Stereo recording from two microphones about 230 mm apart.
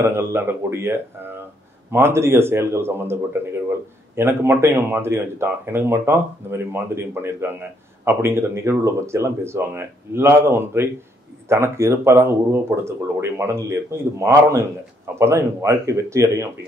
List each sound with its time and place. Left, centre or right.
0.1 s speech: centre